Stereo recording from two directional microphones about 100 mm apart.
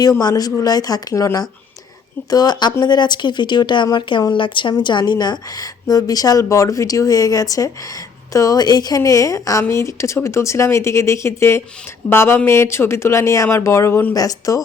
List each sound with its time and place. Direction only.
0.0 s a woman's voice: 40° left (ahead or behind)